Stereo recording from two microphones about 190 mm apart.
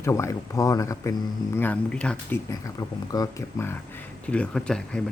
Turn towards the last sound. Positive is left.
turn(degrees=5)  # may be behind; listen again after turning